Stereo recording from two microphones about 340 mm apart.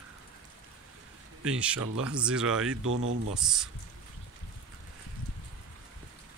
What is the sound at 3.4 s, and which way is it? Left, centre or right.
Speech, centre.